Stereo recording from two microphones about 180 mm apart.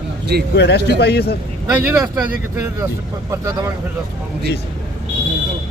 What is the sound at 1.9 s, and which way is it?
Speech, 10° right (ahead or behind).